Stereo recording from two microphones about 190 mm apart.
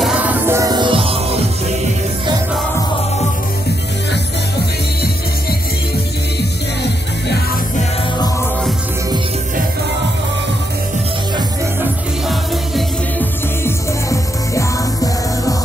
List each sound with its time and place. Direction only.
0.0 s music: 10° right (ahead or behind); by 1.4 s 30° right (ahead or behind)
12.3 s music: centre (ahead or behind)
13.7 s music: 15° left (ahead or behind)